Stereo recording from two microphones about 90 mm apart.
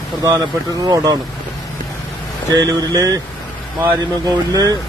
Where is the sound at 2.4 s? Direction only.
50° right (ahead or behind).